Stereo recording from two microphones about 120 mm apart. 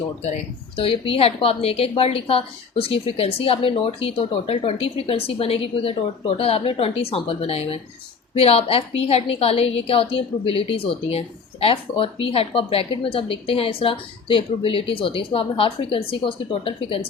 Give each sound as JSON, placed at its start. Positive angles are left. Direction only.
{"t": 0.8, "sound": "a woman's voice", "side_deg": 50}